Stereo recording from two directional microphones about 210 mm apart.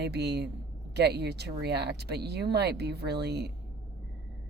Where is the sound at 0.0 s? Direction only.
50° right (ahead or behind).